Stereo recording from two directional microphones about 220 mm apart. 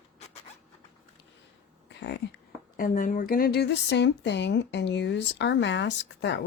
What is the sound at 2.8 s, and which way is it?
Speech, 40° left (ahead or behind).